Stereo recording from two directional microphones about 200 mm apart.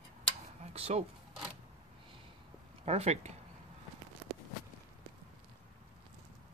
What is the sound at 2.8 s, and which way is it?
Speech, 30° right (ahead or behind).